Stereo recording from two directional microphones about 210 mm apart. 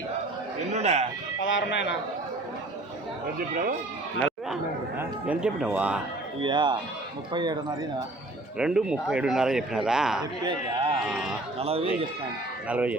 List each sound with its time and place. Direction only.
0.7 s speech: 30° right (ahead or behind)
1.4 s speech: 60° left (ahead or behind)
4.9 s speech: 5° right (ahead or behind)
6.4 s speech: 20° right (ahead or behind)
8.5 s speech: 5° right (ahead or behind)
10.4 s speech: 20° right (ahead or behind)
11.0 s speech: 5° right (ahead or behind)
11.6 s speech: 30° right (ahead or behind)
12.6 s speech: 5° right (ahead or behind)